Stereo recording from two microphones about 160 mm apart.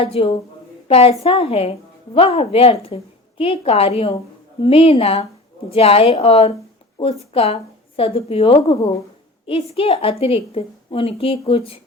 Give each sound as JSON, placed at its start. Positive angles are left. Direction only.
{"t": 0.0, "sound": "a woman's voice", "side_deg": 35}